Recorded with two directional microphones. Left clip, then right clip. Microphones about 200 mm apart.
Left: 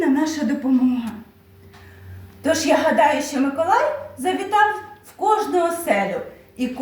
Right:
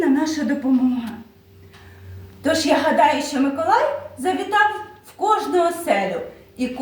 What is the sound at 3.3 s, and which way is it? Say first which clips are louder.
Speech: right 1 dB; 15° left (ahead or behind).